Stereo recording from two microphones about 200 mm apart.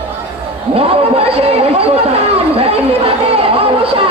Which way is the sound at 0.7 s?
30° right (ahead or behind).